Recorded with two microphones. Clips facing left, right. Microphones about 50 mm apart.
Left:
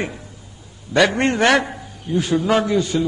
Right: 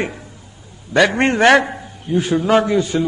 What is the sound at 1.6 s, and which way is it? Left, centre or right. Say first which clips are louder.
A man's voice: right 3 dB; centre.